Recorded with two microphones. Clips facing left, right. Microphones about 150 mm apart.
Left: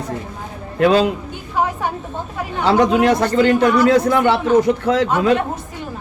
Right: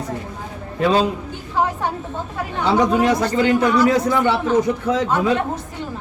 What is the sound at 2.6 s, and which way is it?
A man's voice, 65° left (ahead or behind).